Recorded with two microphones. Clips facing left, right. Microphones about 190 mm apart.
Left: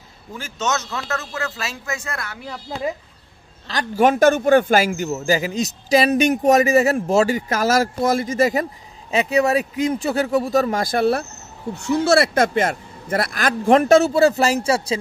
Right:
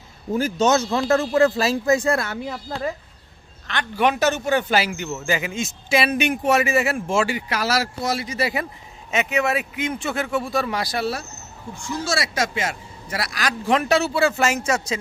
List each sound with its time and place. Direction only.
0.3 s a man's voice: 35° right (ahead or behind)
3.6 s a man's voice: 40° left (ahead or behind)
9.1 s speech: 35° left (ahead or behind); by 11.2 s 55° left (ahead or behind)
11.7 s a man's voice: 65° left (ahead or behind); by 15.0 s 30° left (ahead or behind)